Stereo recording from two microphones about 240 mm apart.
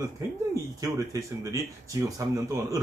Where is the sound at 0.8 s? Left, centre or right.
Centre.